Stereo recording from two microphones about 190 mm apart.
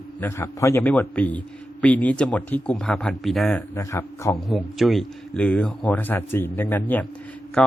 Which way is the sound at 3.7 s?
15° left (ahead or behind).